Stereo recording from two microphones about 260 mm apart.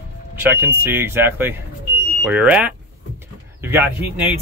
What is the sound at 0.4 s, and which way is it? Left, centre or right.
Speech, centre.